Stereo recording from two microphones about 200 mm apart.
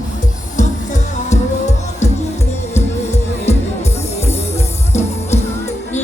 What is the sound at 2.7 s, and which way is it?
Music, 35° left (ahead or behind).